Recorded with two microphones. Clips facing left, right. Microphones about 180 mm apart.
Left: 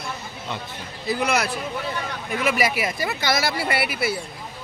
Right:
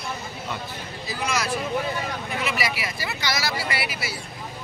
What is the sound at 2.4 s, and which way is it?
Speech, 50° left (ahead or behind).